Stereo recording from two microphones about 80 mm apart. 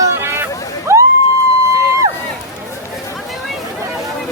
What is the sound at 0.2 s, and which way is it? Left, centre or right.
Boat, right.